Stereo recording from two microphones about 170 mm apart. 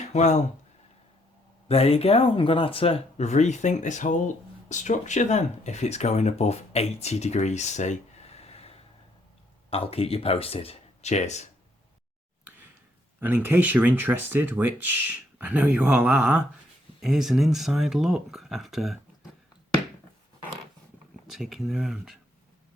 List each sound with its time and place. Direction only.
0.1 s speech: 45° left (ahead or behind)
1.6 s speech: 35° left (ahead or behind)
13.1 s speech: 10° right (ahead or behind)
21.2 s speech: centre (ahead or behind)